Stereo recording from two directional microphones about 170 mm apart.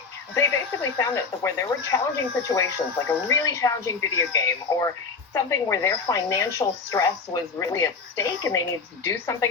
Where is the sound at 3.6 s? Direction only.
20° left (ahead or behind).